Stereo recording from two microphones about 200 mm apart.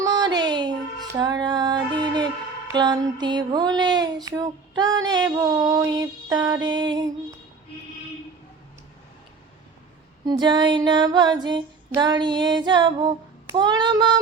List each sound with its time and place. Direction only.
0.0 s a sound: 20° right (ahead or behind)
2.7 s music: 20° right (ahead or behind)
10.2 s music: 20° right (ahead or behind)